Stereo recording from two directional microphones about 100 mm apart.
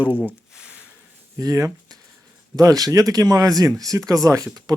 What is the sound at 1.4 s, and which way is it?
Speech, 35° right (ahead or behind).